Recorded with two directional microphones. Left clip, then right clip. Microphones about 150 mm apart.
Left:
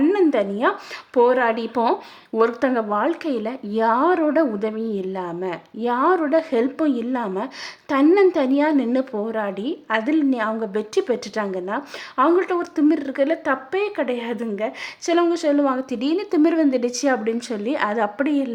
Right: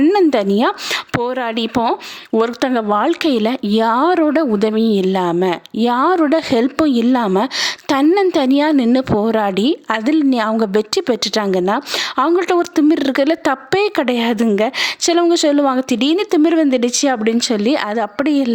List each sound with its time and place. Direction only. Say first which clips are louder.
0.0 s a sound: right 5 dB; 45° right (ahead or behind)
1.1 s a woman's voice: left 5 dB; 50° right (ahead or behind)
1.8 s a woman's voice: right 3 dB; 30° right (ahead or behind)